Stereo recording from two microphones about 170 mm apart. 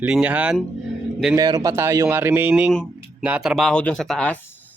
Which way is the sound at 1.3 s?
20° right (ahead or behind).